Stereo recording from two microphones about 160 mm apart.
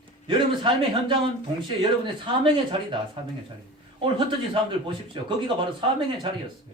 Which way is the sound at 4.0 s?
30° right (ahead or behind).